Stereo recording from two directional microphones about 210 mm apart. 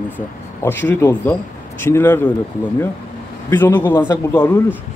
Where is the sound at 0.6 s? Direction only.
10° left (ahead or behind).